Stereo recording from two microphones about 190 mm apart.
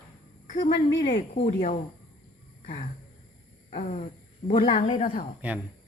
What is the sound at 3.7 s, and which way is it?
Speech, 35° left (ahead or behind).